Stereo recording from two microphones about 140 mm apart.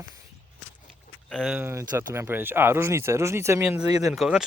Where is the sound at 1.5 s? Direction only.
20° right (ahead or behind).